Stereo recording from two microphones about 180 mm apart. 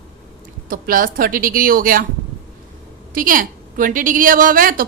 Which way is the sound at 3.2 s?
50° right (ahead or behind).